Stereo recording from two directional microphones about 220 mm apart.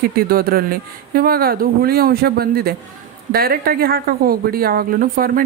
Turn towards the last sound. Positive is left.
turn(degrees=-40)  # may be behind; listen again after turning